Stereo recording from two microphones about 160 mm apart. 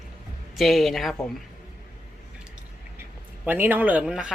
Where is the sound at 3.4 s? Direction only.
10° right (ahead or behind).